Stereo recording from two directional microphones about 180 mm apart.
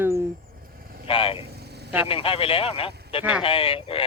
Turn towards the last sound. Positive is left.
turn(degrees=30)  # may be behind; listen again after turning